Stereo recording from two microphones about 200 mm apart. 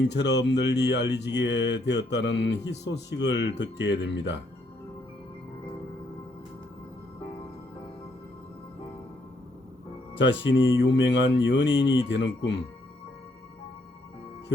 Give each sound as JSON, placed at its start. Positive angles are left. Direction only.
{"t": 0.0, "sound": "speech", "side_deg": 60}
{"t": 10.2, "sound": "speech", "side_deg": 65}